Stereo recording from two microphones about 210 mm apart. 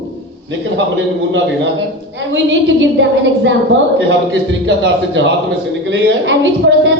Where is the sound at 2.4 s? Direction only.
60° right (ahead or behind).